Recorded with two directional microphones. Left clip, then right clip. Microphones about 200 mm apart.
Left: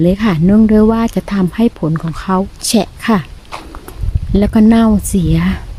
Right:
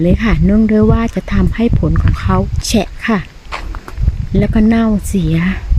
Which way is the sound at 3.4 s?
20° right (ahead or behind).